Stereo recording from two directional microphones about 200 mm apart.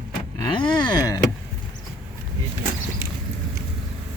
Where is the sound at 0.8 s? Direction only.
20° left (ahead or behind).